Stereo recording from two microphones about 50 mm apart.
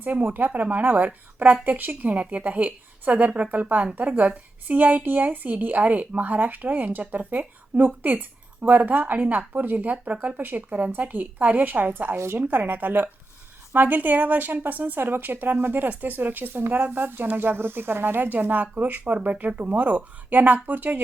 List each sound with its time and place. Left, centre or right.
0.0 s speech: right
12.1 s a woman's voice: right
12.4 s speech: right